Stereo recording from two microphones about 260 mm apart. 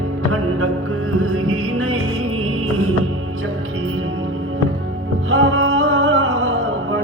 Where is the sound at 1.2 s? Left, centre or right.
Right.